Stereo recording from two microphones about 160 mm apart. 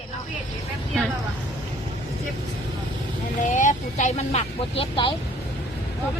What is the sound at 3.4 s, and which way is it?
Speech, 50° left (ahead or behind).